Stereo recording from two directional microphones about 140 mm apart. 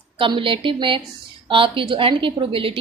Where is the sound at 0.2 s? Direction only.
35° right (ahead or behind).